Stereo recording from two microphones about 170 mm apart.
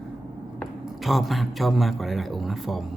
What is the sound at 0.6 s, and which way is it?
Speech, centre (ahead or behind).